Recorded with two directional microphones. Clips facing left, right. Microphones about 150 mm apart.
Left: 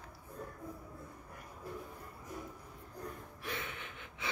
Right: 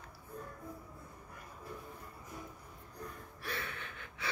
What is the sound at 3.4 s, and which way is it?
Gasp, 15° left (ahead or behind).